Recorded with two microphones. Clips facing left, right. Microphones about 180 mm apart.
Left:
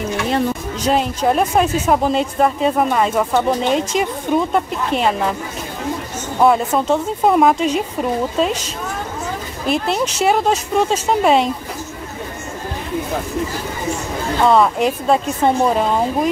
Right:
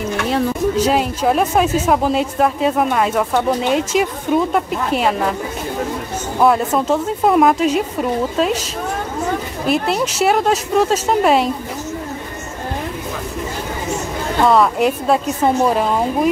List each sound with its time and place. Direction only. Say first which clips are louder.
0.3 s speech: right 4 dB; 5° right (ahead or behind)
6.4 s speech: even; centre (ahead or behind)
9.7 s speech: right 1 dB; 5° right (ahead or behind)
14.5 s speech: even; centre (ahead or behind)